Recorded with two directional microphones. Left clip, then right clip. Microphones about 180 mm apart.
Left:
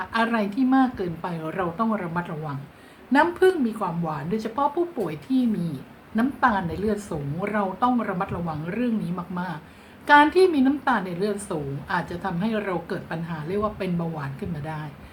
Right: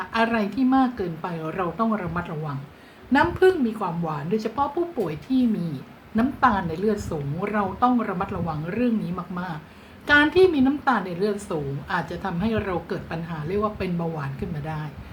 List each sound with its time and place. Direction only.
0.0 s a woman's voice: 5° left (ahead or behind)